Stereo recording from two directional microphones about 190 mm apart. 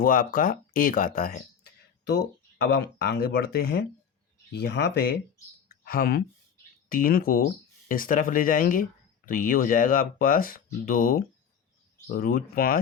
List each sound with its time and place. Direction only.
0.0 s speech: 50° left (ahead or behind)
2.6 s speech: 65° left (ahead or behind)